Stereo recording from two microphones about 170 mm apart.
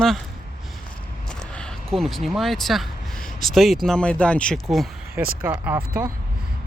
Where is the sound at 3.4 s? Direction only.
Centre (ahead or behind).